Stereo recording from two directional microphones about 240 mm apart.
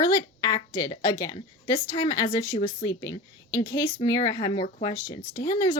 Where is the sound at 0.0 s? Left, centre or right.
Centre.